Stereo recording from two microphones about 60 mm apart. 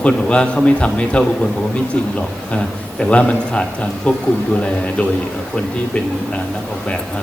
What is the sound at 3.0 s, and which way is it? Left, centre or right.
A man's voice, centre.